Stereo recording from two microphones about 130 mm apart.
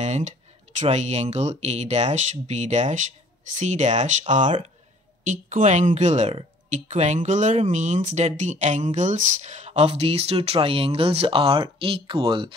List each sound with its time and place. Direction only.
0.0 s speech: 60° right (ahead or behind); by 12.5 s 40° right (ahead or behind)